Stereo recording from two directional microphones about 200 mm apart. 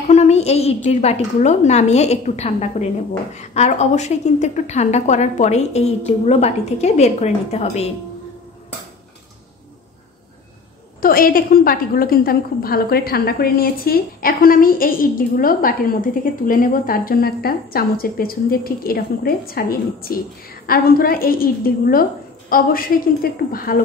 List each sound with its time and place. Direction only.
0.1 s a sound: 35° left (ahead or behind)
0.8 s a woman's voice: 35° left (ahead or behind)
11.0 s a woman's voice: 45° left (ahead or behind)